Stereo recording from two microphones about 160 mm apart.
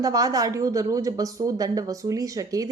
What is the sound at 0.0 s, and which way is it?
A woman's voice, 25° right (ahead or behind).